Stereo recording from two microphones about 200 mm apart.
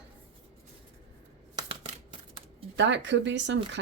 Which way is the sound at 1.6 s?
25° right (ahead or behind).